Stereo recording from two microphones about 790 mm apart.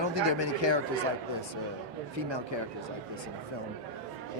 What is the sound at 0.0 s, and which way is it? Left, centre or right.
Speech, right.